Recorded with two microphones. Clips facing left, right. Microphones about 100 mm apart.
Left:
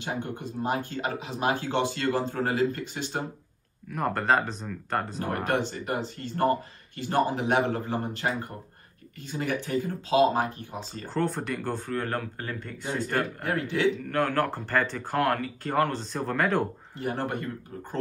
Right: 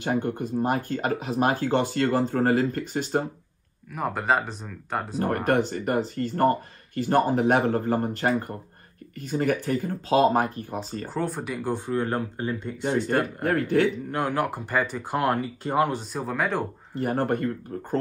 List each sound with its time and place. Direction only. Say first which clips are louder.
0.0 s speech: right 7 dB; 45° right (ahead or behind)
3.9 s speech: even; 5° right (ahead or behind)
5.2 s speech: right 7 dB; 45° right (ahead or behind)
11.1 s speech: left 1 dB; 5° right (ahead or behind)
13.4 s speech: right 6 dB; 45° right (ahead or behind)
14.0 s speech: even; 20° right (ahead or behind); by 17.0 s centre (ahead or behind)
17.0 s speech: right 6 dB; 45° right (ahead or behind)